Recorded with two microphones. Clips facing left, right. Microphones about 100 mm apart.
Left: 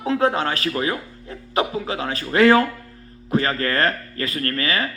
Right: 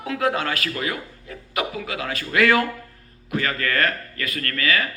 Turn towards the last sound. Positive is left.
turn(degrees=30)  # may be behind; listen again after turning